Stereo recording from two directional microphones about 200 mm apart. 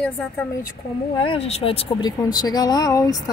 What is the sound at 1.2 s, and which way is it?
Speech, 30° left (ahead or behind).